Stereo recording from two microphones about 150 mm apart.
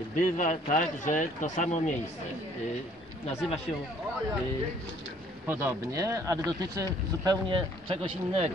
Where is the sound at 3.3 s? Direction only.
45° left (ahead or behind).